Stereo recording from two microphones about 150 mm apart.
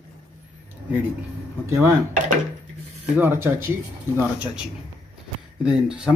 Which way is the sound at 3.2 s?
15° right (ahead or behind).